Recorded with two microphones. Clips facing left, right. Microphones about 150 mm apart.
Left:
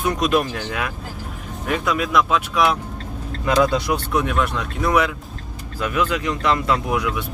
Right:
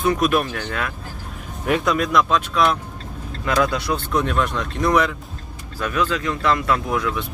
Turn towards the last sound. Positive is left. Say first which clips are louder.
# even
turn(degrees=15)  # may be behind; listen again after turning